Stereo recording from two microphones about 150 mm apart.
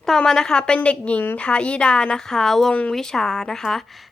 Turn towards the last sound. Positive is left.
turn(degrees=5)  # may be behind; listen again after turning